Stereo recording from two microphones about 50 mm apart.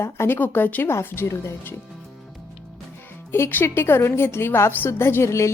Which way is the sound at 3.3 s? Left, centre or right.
Left.